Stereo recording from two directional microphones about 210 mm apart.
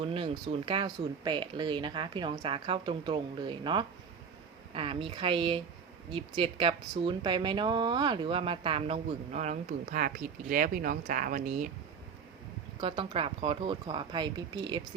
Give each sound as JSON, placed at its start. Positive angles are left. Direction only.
{"t": 0.0, "sound": "speech", "side_deg": -25}
{"t": 12.8, "sound": "speech", "side_deg": -25}